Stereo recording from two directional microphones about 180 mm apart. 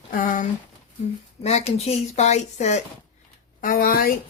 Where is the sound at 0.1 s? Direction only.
50° left (ahead or behind).